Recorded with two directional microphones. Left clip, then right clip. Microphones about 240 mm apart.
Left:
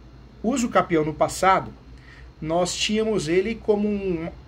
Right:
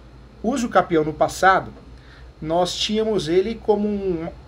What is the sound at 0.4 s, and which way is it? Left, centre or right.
Speech, centre.